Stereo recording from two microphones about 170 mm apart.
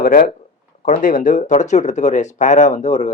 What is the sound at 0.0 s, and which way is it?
Speech, 60° left (ahead or behind).